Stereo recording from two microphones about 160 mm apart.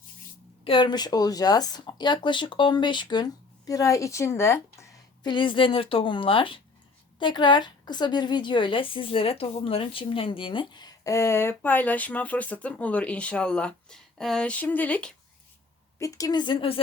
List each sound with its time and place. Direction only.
0.6 s a woman's voice: 30° left (ahead or behind); by 4.9 s 15° left (ahead or behind)
5.2 s a woman's voice: 30° left (ahead or behind); by 15.1 s 10° left (ahead or behind)
16.0 s a woman's voice: 20° left (ahead or behind)